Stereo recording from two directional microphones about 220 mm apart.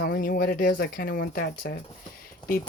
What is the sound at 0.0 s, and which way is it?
Speech, 40° left (ahead or behind).